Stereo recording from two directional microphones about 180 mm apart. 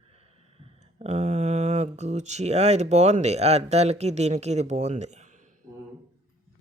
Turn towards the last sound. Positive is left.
turn(degrees=-40)  # may be behind; listen again after turning